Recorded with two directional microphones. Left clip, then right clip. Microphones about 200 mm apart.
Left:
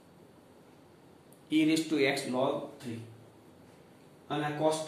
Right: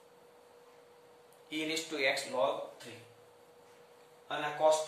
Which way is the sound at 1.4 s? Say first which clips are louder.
Left 8 dB; 15° left (ahead or behind).